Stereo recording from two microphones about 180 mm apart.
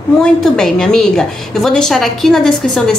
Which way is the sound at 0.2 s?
5° left (ahead or behind).